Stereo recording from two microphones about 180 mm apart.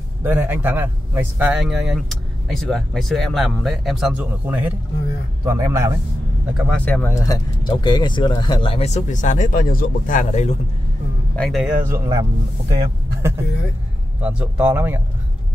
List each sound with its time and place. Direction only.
0.2 s speech: 10° right (ahead or behind)
6.5 s speech: 5° left (ahead or behind); by 10.5 s 45° left (ahead or behind)
11.3 s speech: centre (ahead or behind)
11.9 s speech: 20° right (ahead or behind)
14.2 s speech: 10° right (ahead or behind)